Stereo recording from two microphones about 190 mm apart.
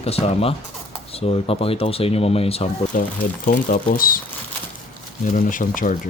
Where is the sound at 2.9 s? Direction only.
45° left (ahead or behind).